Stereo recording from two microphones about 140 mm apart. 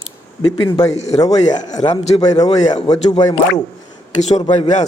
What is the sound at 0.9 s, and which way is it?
Speech, 50° left (ahead or behind).